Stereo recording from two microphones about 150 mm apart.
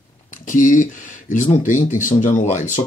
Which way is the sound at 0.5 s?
60° left (ahead or behind).